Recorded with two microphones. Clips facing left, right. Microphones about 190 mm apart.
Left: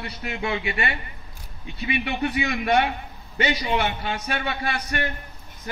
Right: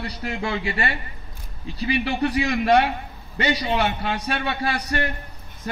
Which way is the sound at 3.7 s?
30° right (ahead or behind).